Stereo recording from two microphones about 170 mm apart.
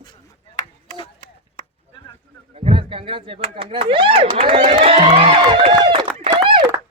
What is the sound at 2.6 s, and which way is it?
Speech, 35° right (ahead or behind).